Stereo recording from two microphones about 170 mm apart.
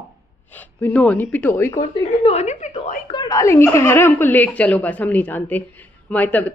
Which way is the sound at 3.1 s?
25° left (ahead or behind).